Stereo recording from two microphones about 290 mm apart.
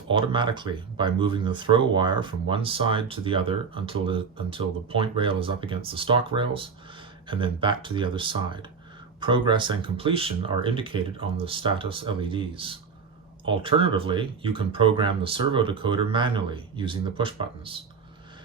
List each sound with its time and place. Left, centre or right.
0.1 s speech: centre